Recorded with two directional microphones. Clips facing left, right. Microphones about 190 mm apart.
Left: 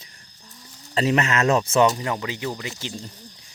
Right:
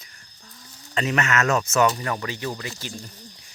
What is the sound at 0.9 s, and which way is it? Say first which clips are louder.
Speech: left 3 dB; 30° left (ahead or behind).